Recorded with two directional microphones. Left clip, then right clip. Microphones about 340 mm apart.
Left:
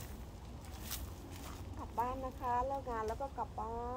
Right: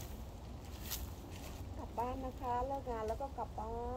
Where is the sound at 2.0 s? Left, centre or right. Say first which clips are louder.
Left 2 dB; centre.